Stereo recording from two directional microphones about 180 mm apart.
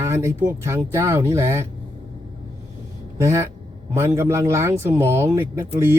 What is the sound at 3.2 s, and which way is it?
Speech, 15° right (ahead or behind).